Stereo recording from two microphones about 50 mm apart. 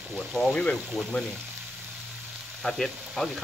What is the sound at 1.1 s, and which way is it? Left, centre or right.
Frying, left.